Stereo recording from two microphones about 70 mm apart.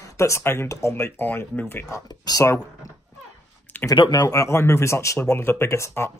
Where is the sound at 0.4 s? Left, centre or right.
Left.